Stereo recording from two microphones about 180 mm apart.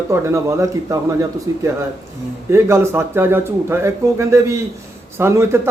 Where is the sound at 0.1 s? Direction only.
15° right (ahead or behind).